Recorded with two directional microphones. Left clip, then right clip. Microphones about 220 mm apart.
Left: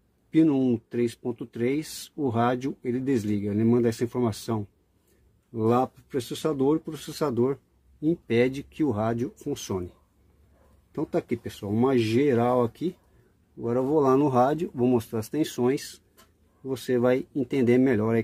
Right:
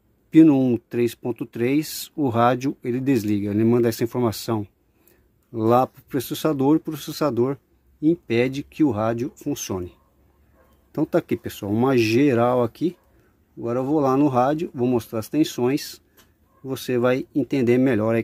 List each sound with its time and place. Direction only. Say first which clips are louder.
0.3 s speech: right 7 dB; 35° right (ahead or behind)
10.9 s speech: right 6 dB; 40° right (ahead or behind)